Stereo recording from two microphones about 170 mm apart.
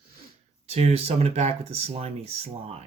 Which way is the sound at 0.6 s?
35° right (ahead or behind).